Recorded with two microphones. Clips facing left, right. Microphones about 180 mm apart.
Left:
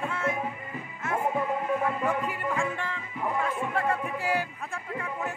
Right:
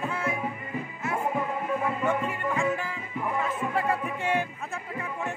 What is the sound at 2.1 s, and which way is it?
Music, centre (ahead or behind).